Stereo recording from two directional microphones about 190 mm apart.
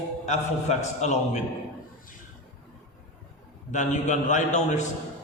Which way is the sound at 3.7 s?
40° left (ahead or behind).